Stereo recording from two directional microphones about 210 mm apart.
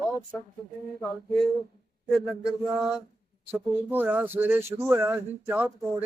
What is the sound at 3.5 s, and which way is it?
Speech, 10° right (ahead or behind).